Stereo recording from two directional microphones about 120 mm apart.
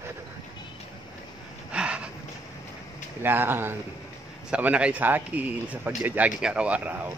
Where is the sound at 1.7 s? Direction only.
10° right (ahead or behind).